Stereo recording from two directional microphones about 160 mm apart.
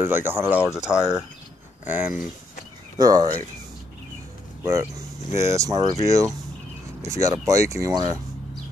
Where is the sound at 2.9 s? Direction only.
25° right (ahead or behind).